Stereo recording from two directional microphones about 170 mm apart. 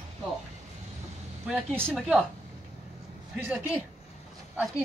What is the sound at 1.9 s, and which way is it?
Speech, centre (ahead or behind).